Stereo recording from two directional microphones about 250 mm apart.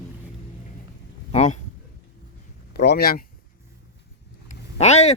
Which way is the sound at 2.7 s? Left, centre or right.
Left.